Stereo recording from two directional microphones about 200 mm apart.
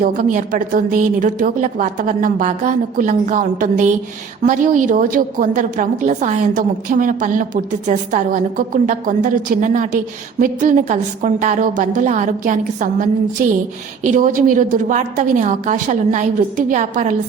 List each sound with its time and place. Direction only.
0.0 s a woman's voice: 45° right (ahead or behind)